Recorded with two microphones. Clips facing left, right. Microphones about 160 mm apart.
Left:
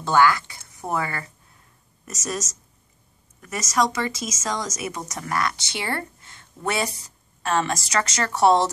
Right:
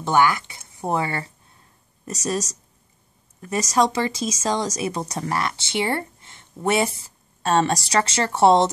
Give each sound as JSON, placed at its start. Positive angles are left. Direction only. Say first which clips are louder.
{"t": 0.0, "sound": "speech", "louder": "even", "side_deg": -20}